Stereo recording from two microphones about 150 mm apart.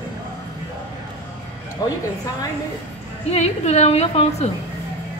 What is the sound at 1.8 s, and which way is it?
Speech, 25° left (ahead or behind).